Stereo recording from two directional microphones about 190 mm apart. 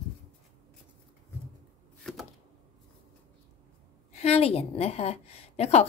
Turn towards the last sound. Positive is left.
turn(degrees=35)  # may be behind; listen again after turning